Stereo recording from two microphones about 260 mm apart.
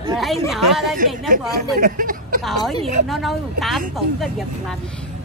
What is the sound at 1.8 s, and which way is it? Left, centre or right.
Speech, right.